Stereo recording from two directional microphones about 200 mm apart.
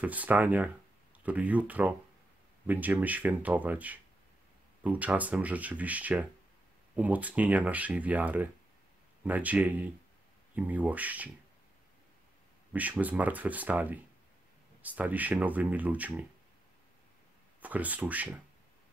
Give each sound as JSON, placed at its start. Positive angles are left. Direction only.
{"t": 0.0, "sound": "speech", "side_deg": -10}
{"t": 12.7, "sound": "speech", "side_deg": -5}
{"t": 17.6, "sound": "speech", "side_deg": -10}